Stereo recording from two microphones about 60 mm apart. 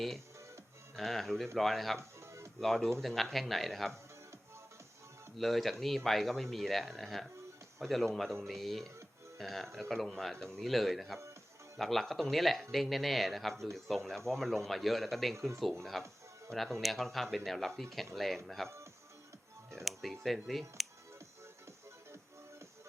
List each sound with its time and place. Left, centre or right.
0.9 s speech: centre
2.0 s music: right
2.6 s speech: centre
5.4 s speech: centre
19.8 s speech: centre